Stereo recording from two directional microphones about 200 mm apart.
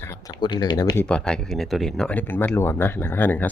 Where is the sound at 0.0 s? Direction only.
15° left (ahead or behind).